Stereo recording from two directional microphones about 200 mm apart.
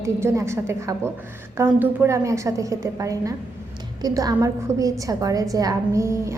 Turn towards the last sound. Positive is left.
turn(degrees=-15)  # may be behind; listen again after turning